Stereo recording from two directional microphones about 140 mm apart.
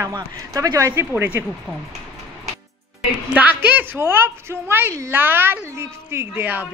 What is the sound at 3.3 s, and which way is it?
A woman's voice, 10° right (ahead or behind).